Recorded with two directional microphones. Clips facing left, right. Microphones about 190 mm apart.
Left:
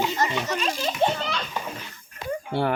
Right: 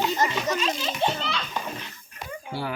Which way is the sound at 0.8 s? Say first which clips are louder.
Left 3 dB; 45° left (ahead or behind).